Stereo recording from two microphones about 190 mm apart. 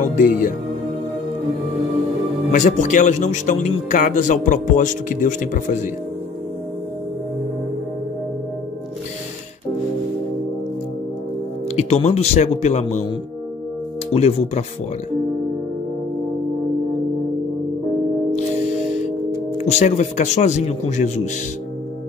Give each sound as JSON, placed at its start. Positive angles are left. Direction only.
{"t": 0.0, "sound": "speech", "side_deg": 45}
{"t": 2.5, "sound": "speech", "side_deg": 40}
{"t": 11.7, "sound": "speech", "side_deg": 35}
{"t": 14.1, "sound": "speech", "side_deg": 35}
{"t": 19.6, "sound": "speech", "side_deg": 35}